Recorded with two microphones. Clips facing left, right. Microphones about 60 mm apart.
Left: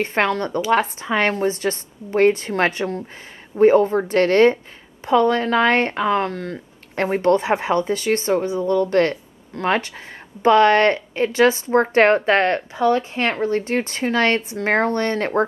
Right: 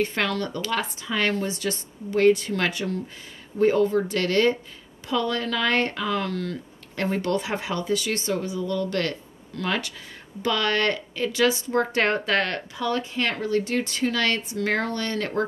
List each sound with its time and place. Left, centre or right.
0.0 s speech: left